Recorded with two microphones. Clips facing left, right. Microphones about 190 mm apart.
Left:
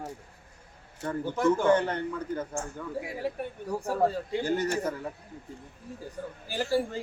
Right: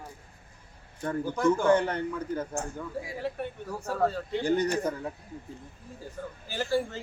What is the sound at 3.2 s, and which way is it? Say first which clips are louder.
Speech: left 1 dB; 15° left (ahead or behind).